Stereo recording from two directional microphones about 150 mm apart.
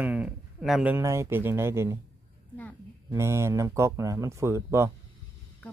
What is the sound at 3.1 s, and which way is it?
Speech, 20° right (ahead or behind).